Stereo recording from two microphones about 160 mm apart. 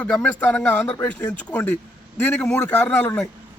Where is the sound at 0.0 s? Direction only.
10° left (ahead or behind).